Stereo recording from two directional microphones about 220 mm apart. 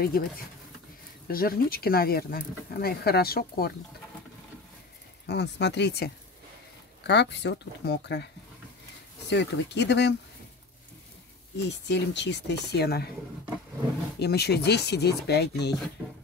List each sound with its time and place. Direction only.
0.2 s speech: 40° left (ahead or behind)
5.2 s speech: 50° left (ahead or behind)
9.3 s speech: 50° left (ahead or behind)
11.5 s speech: 50° left (ahead or behind)
14.2 s speech: 45° left (ahead or behind)